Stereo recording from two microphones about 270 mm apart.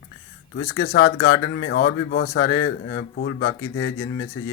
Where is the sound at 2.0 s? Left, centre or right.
Left.